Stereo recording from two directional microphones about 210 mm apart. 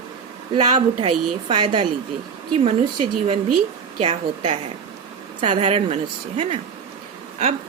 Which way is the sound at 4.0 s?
25° right (ahead or behind).